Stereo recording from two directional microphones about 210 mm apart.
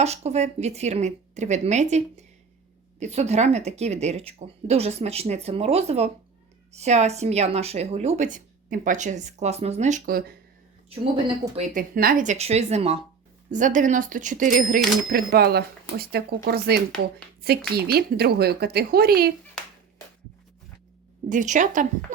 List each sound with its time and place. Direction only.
0.0 s speech: 30° right (ahead or behind)
11.5 s speech: 35° right (ahead or behind)
21.2 s speech: 35° right (ahead or behind)